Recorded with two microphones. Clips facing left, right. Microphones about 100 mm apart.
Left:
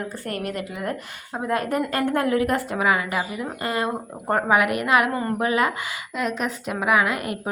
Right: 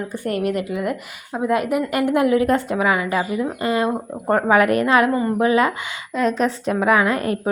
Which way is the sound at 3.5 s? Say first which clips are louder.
Right 4 dB; 20° right (ahead or behind).